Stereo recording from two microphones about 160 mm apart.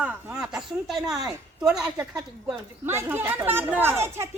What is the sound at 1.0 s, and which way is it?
Speech, 25° right (ahead or behind).